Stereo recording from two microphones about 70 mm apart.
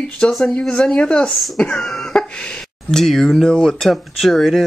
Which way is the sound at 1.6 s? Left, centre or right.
Centre.